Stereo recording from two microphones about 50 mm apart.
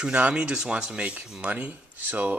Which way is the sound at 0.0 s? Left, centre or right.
Right.